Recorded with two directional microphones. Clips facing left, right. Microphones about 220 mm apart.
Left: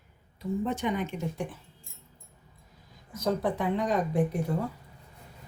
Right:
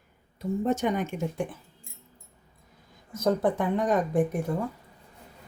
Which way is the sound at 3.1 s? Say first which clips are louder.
Right 4 dB; 50° right (ahead or behind).